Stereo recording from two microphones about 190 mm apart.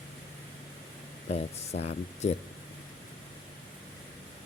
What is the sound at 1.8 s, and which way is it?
Speech, 35° left (ahead or behind).